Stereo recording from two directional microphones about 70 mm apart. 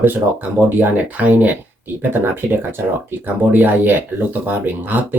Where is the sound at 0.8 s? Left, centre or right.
Right.